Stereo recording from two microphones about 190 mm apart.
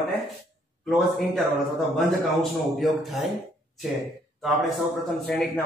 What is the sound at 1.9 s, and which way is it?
A man's voice, centre (ahead or behind).